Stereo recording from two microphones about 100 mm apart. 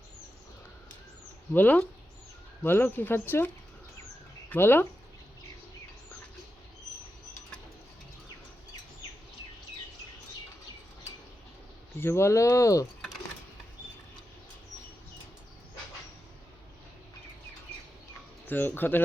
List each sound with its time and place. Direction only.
1.5 s speech: 15° left (ahead or behind)
11.9 s speech: 25° left (ahead or behind)
18.4 s speech: 20° left (ahead or behind)